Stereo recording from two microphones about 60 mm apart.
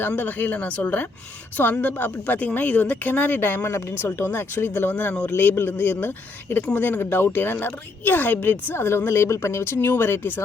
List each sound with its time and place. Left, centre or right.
0.0 s a woman's voice: left